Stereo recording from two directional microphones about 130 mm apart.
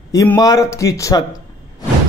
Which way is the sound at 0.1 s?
25° left (ahead or behind).